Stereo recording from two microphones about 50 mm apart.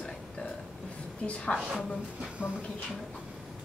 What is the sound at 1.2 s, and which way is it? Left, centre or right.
Speech, left.